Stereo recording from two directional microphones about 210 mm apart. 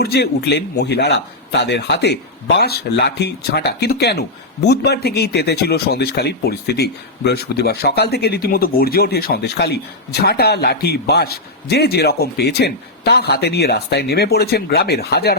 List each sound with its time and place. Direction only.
0.0 s speech: 50° left (ahead or behind)